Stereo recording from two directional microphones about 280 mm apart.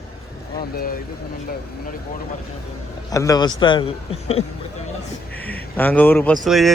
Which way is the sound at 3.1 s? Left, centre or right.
Centre.